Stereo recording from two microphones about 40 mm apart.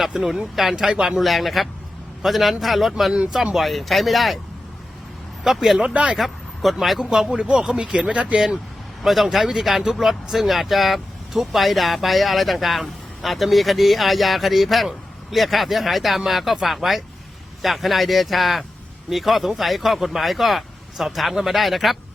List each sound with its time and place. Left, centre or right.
0.1 s speech: centre
1.2 s speech: centre
5.4 s speech: centre
7.1 s speech: centre
7.3 s speech: right
7.6 s speech: centre; by 8.4 s right
9.0 s speech: centre